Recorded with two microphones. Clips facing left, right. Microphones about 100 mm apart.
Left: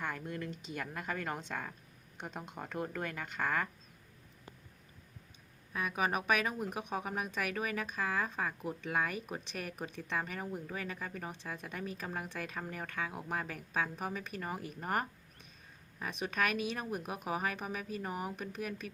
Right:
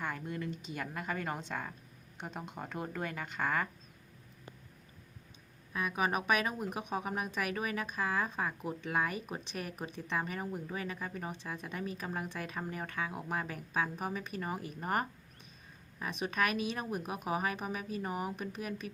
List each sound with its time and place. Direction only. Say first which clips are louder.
0.0 s speech: right 1 dB; 5° right (ahead or behind)
5.7 s speech: right 1 dB; centre (ahead or behind)
9.5 s speech: right 1 dB; 20° right (ahead or behind)
9.7 s speech: right 1 dB; 5° right (ahead or behind)
16.0 s speech: right 1 dB; 10° right (ahead or behind)